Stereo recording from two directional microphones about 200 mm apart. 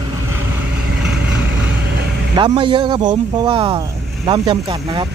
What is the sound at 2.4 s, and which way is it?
Speech, 25° right (ahead or behind).